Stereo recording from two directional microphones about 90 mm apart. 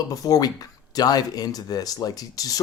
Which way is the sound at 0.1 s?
45° left (ahead or behind).